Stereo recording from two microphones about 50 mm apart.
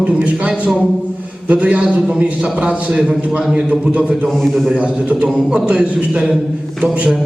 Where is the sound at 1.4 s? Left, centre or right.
Right.